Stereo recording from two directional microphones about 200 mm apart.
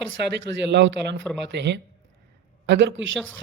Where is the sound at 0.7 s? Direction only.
65° right (ahead or behind).